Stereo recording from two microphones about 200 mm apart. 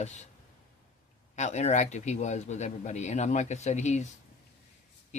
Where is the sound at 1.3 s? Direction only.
35° left (ahead or behind).